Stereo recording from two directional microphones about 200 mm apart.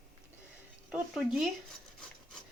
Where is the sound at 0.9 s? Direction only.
Centre (ahead or behind).